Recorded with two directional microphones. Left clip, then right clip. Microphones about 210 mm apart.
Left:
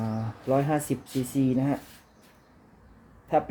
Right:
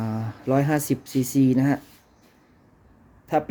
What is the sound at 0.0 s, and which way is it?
Speech, 25° right (ahead or behind).